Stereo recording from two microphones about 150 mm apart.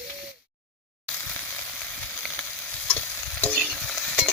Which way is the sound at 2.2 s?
10° left (ahead or behind).